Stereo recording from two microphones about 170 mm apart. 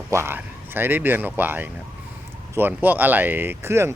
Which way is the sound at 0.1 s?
15° right (ahead or behind).